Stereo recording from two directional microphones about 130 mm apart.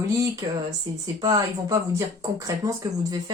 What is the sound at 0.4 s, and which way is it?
Speech, 35° right (ahead or behind).